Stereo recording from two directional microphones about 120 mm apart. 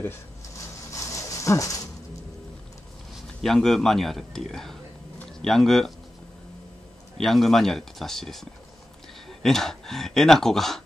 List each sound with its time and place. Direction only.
0.9 s dog: 25° left (ahead or behind)
3.3 s speech: 5° left (ahead or behind)
7.2 s speech: centre (ahead or behind)